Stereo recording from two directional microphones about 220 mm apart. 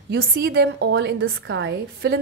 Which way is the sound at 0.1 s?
45° right (ahead or behind).